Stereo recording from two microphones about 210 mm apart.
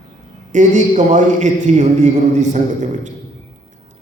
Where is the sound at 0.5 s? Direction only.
35° right (ahead or behind).